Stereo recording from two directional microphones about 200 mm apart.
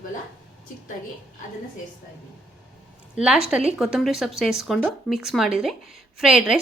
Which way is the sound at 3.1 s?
5° right (ahead or behind).